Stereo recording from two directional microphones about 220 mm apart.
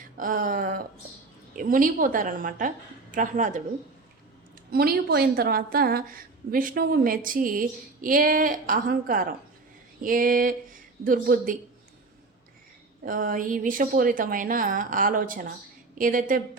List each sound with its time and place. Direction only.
0.2 s a woman's voice: 40° right (ahead or behind)
4.7 s a woman's voice: 45° right (ahead or behind)
13.1 s a woman's voice: 40° right (ahead or behind)